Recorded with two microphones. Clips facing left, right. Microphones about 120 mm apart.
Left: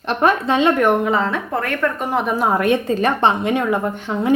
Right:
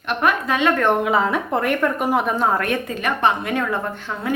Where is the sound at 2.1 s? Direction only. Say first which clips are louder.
Left 2 dB; centre (ahead or behind); by 2.8 s 15° left (ahead or behind).